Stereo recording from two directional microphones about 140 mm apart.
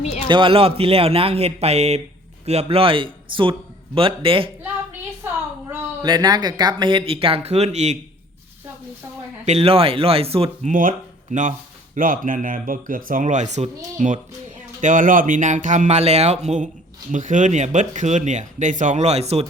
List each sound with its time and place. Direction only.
0.0 s speech: 50° left (ahead or behind)
0.3 s speech: 35° right (ahead or behind)
6.0 s speech: 30° right (ahead or behind); by 7.9 s 50° right (ahead or behind)
9.5 s speech: 45° right (ahead or behind)
10.7 s speech: 70° right (ahead or behind); by 19.5 s 50° right (ahead or behind)